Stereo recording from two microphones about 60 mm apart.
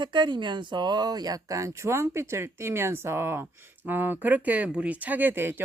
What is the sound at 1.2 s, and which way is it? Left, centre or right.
Speech, right.